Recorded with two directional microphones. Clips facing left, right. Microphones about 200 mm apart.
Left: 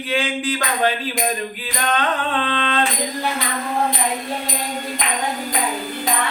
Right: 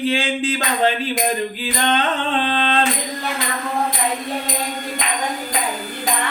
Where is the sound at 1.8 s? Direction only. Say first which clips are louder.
Right 1 dB; 30° right (ahead or behind).